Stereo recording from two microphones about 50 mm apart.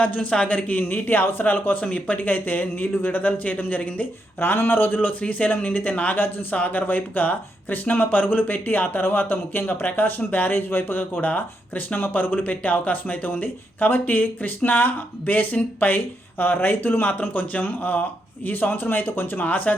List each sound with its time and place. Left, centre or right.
0.0 s speech: left
4.4 s speech: left
6.1 s speech: left